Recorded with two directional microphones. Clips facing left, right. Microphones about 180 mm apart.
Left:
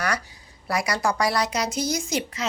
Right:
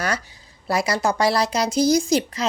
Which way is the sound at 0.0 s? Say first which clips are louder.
Right 2 dB; 25° right (ahead or behind).